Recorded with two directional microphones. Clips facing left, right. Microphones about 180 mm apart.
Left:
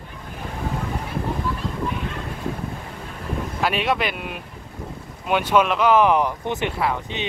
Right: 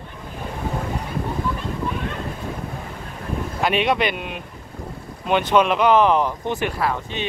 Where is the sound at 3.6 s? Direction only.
Centre (ahead or behind).